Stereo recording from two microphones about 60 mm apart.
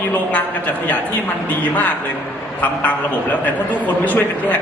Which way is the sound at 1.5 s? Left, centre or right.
Left.